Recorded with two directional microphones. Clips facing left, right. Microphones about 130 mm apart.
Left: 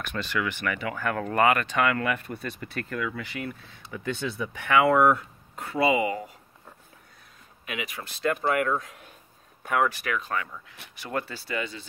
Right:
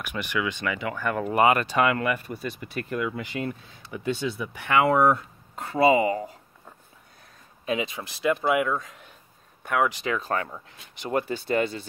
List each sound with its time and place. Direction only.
0.0 s speech: 15° right (ahead or behind)
4.0 s speech: 15° right (ahead or behind); by 6.2 s 35° right (ahead or behind)
7.6 s speech: 25° right (ahead or behind)
8.0 s speech: 10° right (ahead or behind)
9.8 s speech: 20° right (ahead or behind)
10.2 s speech: 35° right (ahead or behind)
11.0 s speech: 20° right (ahead or behind)
11.4 s speech: 45° right (ahead or behind)